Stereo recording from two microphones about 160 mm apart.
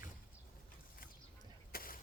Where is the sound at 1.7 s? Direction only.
65° left (ahead or behind).